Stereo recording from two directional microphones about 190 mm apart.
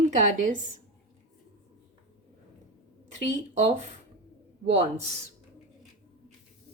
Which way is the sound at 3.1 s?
40° right (ahead or behind).